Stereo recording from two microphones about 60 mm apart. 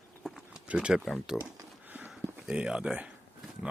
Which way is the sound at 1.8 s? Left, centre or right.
Right.